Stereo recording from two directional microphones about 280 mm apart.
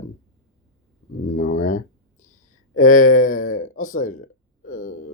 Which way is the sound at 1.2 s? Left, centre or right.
Left.